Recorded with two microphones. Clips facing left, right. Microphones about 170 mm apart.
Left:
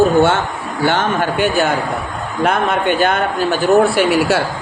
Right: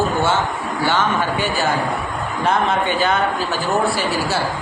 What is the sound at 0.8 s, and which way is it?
A man's voice, 55° left (ahead or behind).